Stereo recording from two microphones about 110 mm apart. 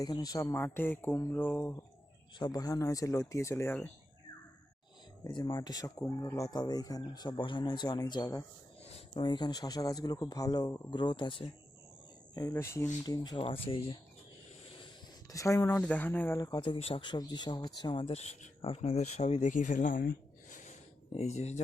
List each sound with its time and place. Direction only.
0.0 s speech: 35° left (ahead or behind)
0.4 s speech: 20° left (ahead or behind)
2.4 s speech: 35° left (ahead or behind)
5.2 s speech: 40° left (ahead or behind)
8.8 s a sound: 70° left (ahead or behind)
9.1 s speech: 45° left (ahead or behind)
12.3 s speech: 30° left (ahead or behind)
13.2 s speech: 50° left (ahead or behind)
15.3 s speech: 30° left (ahead or behind)
15.8 s speech: 15° left (ahead or behind)
16.7 s speech: 60° left (ahead or behind); by 19.5 s 85° left
20.7 s a sound: 75° left (ahead or behind)